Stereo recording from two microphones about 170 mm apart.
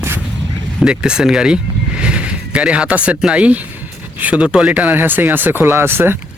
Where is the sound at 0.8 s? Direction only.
5° right (ahead or behind).